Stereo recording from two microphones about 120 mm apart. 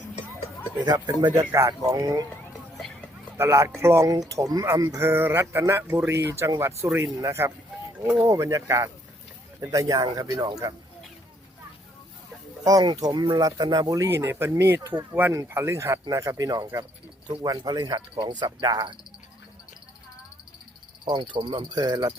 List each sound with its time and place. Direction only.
0.9 s speech: 35° right (ahead or behind)
1.5 s speech: 25° right (ahead or behind)
3.3 s speech: 20° right (ahead or behind)
12.6 s speech: 30° right (ahead or behind)
21.0 s speech: 40° right (ahead or behind)